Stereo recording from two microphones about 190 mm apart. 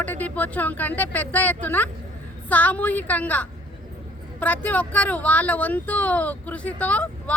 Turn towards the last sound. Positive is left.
turn(degrees=10)  # may be behind; listen again after turning